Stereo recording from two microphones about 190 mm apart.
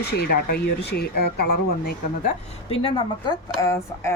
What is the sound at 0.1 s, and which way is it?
Speech, 55° left (ahead or behind).